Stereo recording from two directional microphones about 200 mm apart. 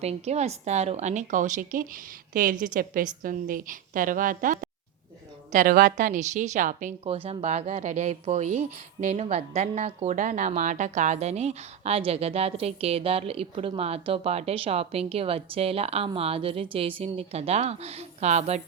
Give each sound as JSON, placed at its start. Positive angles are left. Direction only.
{"t": 0.0, "sound": "a woman's voice", "side_deg": -30}